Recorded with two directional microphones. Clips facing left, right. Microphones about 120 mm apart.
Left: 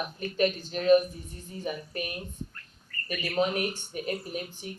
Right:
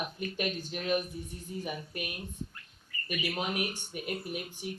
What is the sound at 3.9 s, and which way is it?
Speech, 40° left (ahead or behind).